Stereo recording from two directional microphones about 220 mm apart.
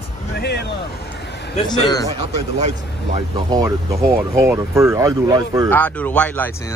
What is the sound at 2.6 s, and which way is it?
Speech, 25° right (ahead or behind).